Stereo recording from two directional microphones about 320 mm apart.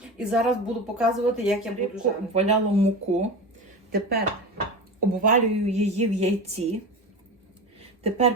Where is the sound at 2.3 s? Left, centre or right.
Centre.